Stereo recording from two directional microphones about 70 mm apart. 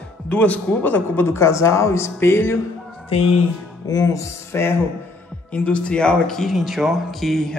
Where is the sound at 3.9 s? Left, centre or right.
Left.